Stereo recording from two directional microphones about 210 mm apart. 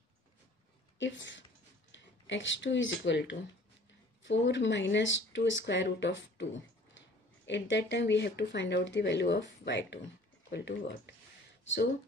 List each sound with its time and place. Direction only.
0.9 s speech: 60° left (ahead or behind)
7.4 s speech: 55° left (ahead or behind)